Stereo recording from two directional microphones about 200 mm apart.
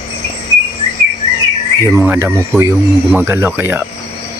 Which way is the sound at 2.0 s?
10° right (ahead or behind).